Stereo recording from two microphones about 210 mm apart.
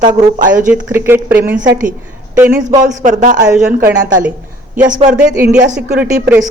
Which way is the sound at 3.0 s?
35° right (ahead or behind).